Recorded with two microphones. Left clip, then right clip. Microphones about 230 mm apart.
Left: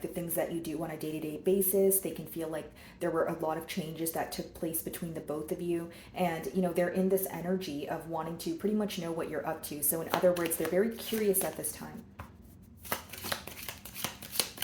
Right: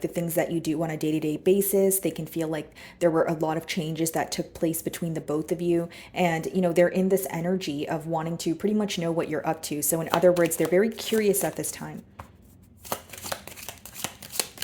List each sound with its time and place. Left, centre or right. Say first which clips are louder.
0.1 s speech: right 7 dB; right